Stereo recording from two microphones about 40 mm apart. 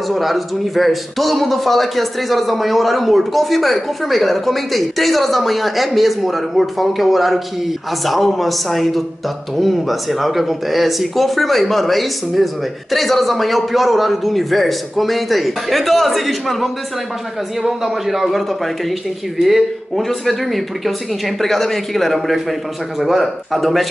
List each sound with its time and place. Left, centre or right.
0.1 s a man's voice: centre